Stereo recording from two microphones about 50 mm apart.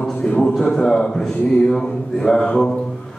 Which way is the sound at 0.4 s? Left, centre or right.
Centre.